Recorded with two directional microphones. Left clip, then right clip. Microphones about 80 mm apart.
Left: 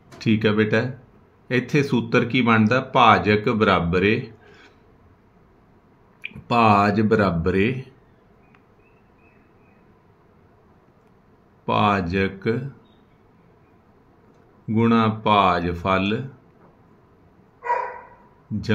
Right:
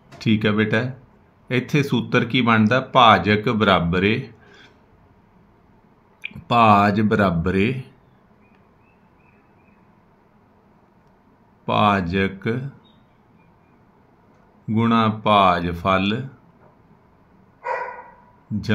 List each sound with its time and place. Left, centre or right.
0.2 s speech: right
6.2 s speech: right
11.6 s speech: right
14.7 s speech: right